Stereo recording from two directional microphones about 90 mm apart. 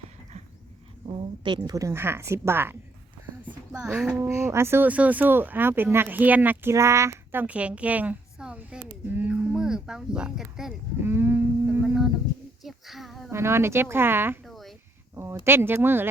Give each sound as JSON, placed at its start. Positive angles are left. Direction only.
{"t": 1.6, "sound": "speech", "side_deg": -35}
{"t": 4.1, "sound": "speech", "side_deg": -30}
{"t": 4.9, "sound": "speech", "side_deg": -15}
{"t": 7.4, "sound": "a sound", "side_deg": -15}
{"t": 11.0, "sound": "a child's voice", "side_deg": -25}
{"t": 13.3, "sound": "speech", "side_deg": -30}
{"t": 14.4, "sound": "a sound", "side_deg": 0}
{"t": 15.1, "sound": "a sound", "side_deg": -30}
{"t": 15.4, "sound": "speech", "side_deg": -25}